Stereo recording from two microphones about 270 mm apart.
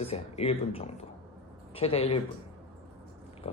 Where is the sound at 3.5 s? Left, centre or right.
Left.